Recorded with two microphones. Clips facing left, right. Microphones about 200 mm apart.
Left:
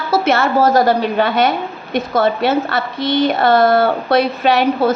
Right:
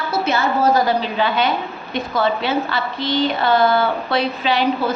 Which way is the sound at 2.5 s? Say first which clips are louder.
Left 4 dB; 45° left (ahead or behind).